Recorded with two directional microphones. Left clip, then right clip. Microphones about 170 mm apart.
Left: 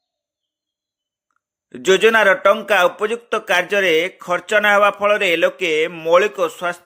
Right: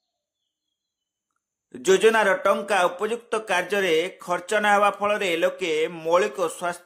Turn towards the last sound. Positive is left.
turn(degrees=15)  # may be behind; listen again after turning